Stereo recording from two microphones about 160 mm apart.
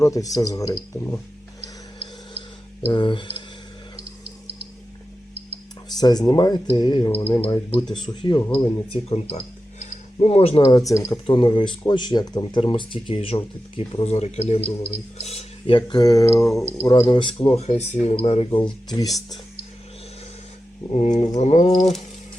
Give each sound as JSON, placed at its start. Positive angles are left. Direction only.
{"t": 0.0, "sound": "speech", "side_deg": 20}
{"t": 2.8, "sound": "speech", "side_deg": 30}
{"t": 6.0, "sound": "speech", "side_deg": 25}
{"t": 9.0, "sound": "speech", "side_deg": 40}
{"t": 9.8, "sound": "a sound", "side_deg": 40}
{"t": 10.6, "sound": "speech", "side_deg": 20}
{"t": 20.9, "sound": "a sound", "side_deg": 45}